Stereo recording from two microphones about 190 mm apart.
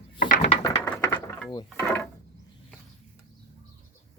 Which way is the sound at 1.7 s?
10° left (ahead or behind).